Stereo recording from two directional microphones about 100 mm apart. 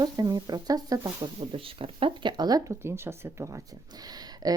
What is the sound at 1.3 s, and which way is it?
Speech, 65° right (ahead or behind).